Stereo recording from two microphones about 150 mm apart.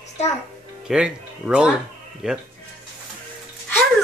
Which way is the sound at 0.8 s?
5° right (ahead or behind).